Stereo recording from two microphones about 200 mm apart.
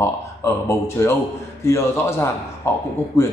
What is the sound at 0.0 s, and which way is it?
A man's voice, 15° left (ahead or behind).